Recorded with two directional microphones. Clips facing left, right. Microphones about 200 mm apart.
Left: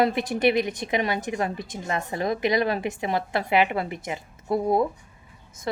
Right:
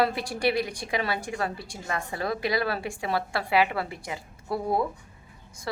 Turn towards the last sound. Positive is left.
turn(degrees=20)  # may be behind; listen again after turning